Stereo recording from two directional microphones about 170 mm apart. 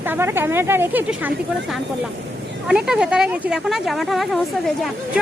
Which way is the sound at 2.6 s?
5° right (ahead or behind).